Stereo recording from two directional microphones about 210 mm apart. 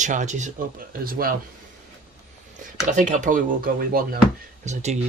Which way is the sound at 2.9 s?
35° right (ahead or behind).